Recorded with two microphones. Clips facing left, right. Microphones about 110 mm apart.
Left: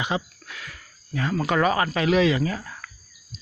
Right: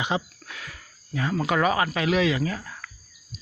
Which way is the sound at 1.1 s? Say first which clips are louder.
Left 1 dB; 10° right (ahead or behind).